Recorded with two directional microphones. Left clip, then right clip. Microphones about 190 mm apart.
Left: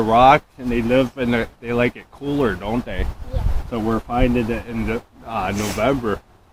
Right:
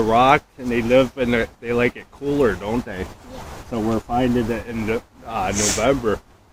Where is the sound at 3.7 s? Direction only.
10° left (ahead or behind).